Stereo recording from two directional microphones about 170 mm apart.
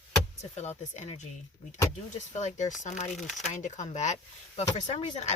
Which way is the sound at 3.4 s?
45° left (ahead or behind).